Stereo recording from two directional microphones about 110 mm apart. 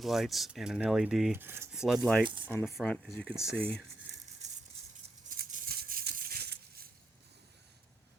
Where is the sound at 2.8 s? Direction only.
5° right (ahead or behind).